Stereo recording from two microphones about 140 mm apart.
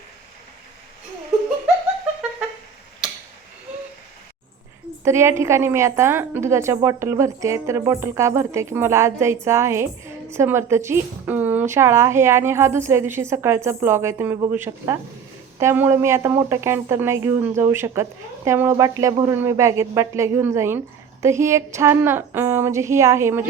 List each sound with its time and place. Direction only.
3.0 s tick-tock: 5° right (ahead or behind)
5.0 s a woman's voice: 20° right (ahead or behind)